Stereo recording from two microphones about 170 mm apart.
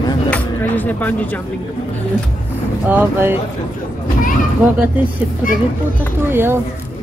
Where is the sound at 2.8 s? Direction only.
10° right (ahead or behind).